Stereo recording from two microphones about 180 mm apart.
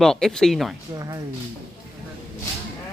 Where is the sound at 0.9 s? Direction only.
20° right (ahead or behind).